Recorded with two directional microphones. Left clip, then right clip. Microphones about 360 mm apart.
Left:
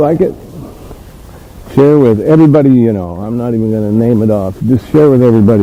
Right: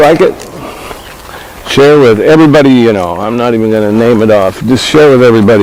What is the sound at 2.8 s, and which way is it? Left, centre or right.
Speech, centre.